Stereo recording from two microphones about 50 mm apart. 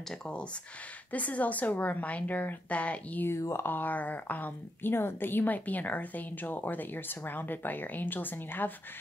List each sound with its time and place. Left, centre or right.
1.1 s a woman's voice: left
3.3 s speech: left
3.6 s a woman's voice: left
4.9 s a woman's voice: left